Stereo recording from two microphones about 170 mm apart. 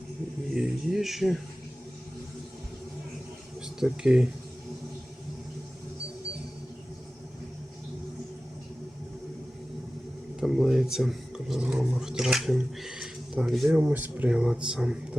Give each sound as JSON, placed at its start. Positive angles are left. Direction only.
{"t": 0.5, "sound": "speech", "side_deg": 0}
{"t": 3.8, "sound": "speech", "side_deg": -5}
{"t": 10.4, "sound": "speech", "side_deg": 0}